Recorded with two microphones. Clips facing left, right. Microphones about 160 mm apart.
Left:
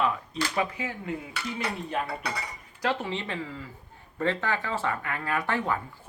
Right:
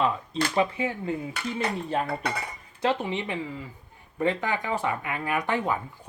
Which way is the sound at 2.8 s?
15° right (ahead or behind).